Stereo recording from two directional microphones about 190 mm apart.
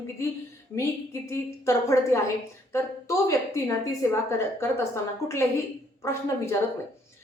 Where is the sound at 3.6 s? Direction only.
15° left (ahead or behind).